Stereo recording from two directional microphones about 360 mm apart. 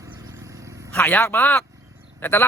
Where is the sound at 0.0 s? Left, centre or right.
Centre.